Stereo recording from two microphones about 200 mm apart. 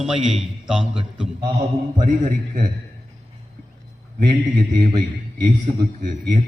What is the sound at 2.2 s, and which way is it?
Speech, 40° right (ahead or behind).